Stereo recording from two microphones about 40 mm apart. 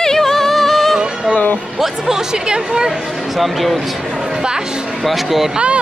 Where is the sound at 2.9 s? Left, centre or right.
Centre.